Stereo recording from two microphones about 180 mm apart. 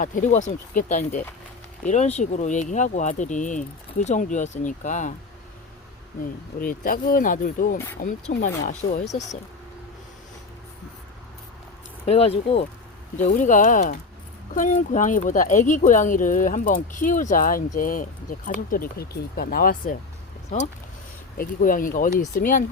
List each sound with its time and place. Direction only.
0.0 s speech: 45° left (ahead or behind)
6.6 s speech: 50° left (ahead or behind)
12.0 s speech: 35° left (ahead or behind); by 20.0 s 50° left (ahead or behind)
21.3 s speech: 50° left (ahead or behind)